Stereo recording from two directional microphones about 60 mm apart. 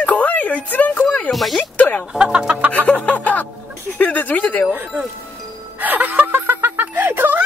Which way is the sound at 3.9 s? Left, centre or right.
Left.